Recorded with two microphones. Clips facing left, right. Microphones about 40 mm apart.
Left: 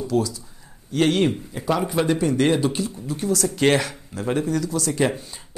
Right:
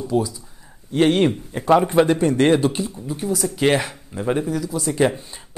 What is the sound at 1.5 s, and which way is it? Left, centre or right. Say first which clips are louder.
Speech: right 7 dB; right.